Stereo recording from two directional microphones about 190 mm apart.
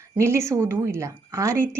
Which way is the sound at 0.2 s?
15° right (ahead or behind).